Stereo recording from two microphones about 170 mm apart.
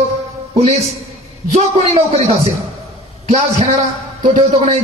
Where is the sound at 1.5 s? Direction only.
40° right (ahead or behind).